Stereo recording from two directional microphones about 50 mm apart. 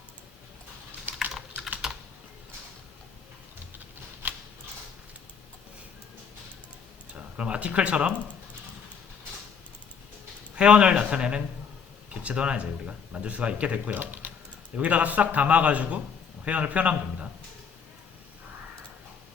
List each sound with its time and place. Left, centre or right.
1.8 s typing: centre
7.1 s speech: right
10.5 s speech: right
14.0 s typing: right
14.8 s speech: right